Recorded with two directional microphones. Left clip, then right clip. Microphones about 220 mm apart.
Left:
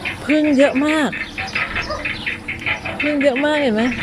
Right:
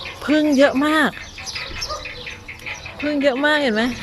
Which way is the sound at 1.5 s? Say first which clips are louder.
Left 6 dB; 40° left (ahead or behind).